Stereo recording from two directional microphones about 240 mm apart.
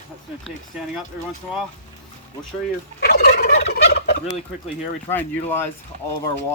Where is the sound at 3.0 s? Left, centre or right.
Left.